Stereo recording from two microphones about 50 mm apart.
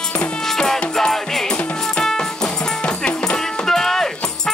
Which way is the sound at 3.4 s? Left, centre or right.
Centre.